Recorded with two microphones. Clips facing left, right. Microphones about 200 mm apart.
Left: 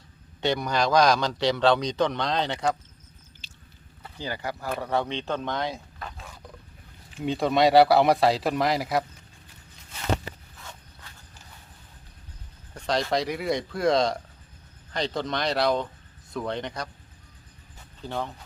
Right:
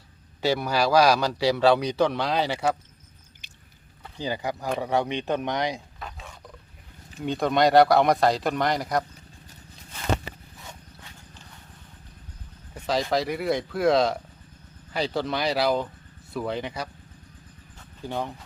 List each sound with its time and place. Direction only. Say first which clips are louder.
0.4 s speech: right 1 dB; 5° right (ahead or behind)
3.4 s chewing: left 2 dB; 20° right (ahead or behind)
4.2 s speech: right 3 dB; 15° right (ahead or behind)
6.0 s roaring cats: even; centre (ahead or behind)
7.3 s speech: even; centre (ahead or behind)
12.7 s speech: right 1 dB; 5° right (ahead or behind)
18.0 s speech: right 1 dB; 15° right (ahead or behind)